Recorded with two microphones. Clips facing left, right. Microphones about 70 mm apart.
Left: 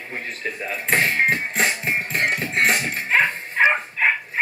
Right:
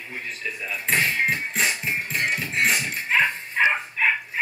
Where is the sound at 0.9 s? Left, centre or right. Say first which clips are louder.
Left 3 dB; left.